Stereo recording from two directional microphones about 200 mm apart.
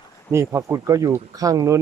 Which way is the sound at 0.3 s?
15° right (ahead or behind).